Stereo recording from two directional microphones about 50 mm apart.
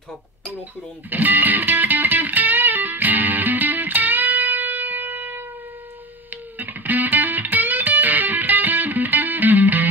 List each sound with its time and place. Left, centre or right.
1.1 s music: right